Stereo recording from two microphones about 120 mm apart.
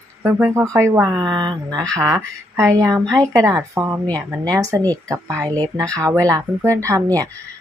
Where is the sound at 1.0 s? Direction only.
35° right (ahead or behind).